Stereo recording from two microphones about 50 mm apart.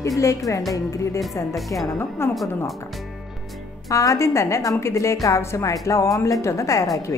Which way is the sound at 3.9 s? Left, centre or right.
Left.